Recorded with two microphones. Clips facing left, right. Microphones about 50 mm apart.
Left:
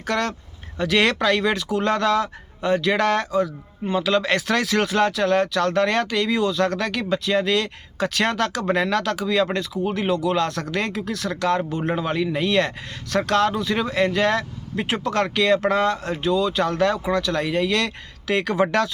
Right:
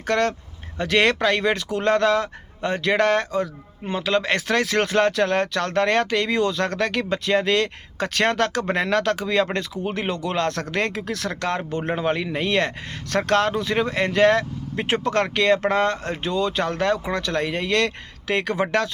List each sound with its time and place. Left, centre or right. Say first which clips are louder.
0.1 s speech: right 3 dB; right
11.9 s speech: right 1 dB; right